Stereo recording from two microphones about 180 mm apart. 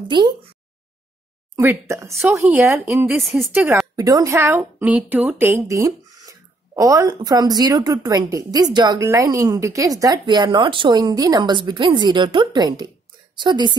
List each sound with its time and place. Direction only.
1.6 s speech: 15° right (ahead or behind)
3.9 s a woman's voice: 20° right (ahead or behind)